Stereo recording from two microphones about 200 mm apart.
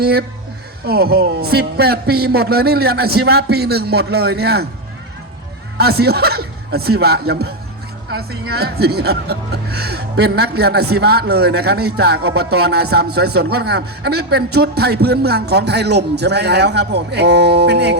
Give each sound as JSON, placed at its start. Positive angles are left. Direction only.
{"t": 0.0, "sound": "speech", "side_deg": -50}
{"t": 5.7, "sound": "speech", "side_deg": -50}